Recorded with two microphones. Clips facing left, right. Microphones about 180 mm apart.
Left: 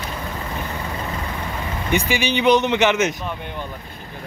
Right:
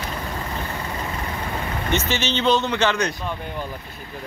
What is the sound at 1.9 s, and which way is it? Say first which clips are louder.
Speech: left 3 dB; 15° left (ahead or behind).